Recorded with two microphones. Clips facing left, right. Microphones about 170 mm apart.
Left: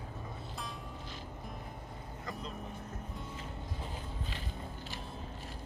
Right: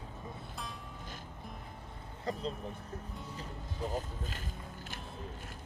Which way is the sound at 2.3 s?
30° right (ahead or behind).